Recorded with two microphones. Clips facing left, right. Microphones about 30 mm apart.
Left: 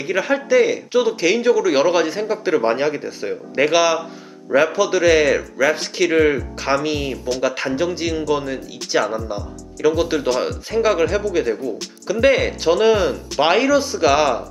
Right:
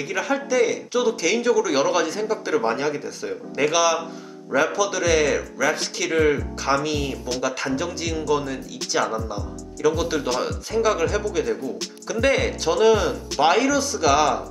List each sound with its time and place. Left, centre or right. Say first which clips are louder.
0.1 s a man's voice: left 6 dB; left